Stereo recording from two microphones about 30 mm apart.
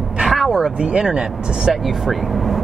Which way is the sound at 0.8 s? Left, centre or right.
Right.